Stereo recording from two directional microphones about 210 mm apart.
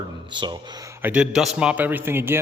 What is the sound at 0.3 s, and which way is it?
Speech, 20° right (ahead or behind).